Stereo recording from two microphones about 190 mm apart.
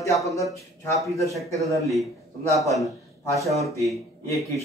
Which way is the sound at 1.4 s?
15° right (ahead or behind).